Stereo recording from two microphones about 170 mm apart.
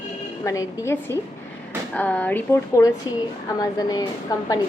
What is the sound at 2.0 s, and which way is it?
Speech, 10° left (ahead or behind).